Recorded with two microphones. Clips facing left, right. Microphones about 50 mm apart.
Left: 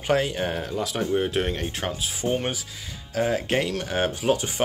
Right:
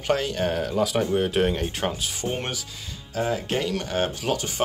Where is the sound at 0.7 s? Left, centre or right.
Centre.